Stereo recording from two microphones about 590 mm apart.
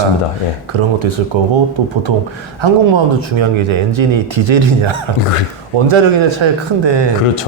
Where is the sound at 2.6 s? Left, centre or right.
Right.